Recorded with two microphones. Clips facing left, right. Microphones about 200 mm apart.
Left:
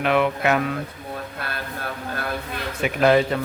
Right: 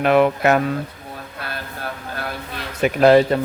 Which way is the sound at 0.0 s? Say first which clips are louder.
Right 5 dB; 45° right (ahead or behind).